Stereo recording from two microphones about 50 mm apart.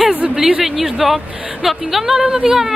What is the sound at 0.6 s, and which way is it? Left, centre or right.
Speech, centre.